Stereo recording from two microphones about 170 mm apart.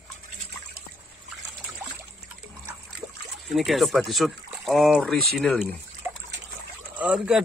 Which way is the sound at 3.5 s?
Centre (ahead or behind).